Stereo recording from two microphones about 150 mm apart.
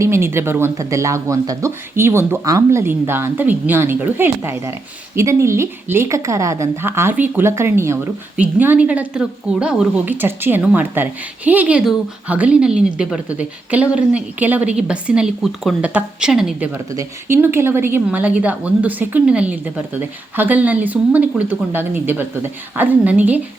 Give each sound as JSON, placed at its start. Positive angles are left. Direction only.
{"t": 0.0, "sound": "speech", "side_deg": -15}
{"t": 16.9, "sound": "speech", "side_deg": -20}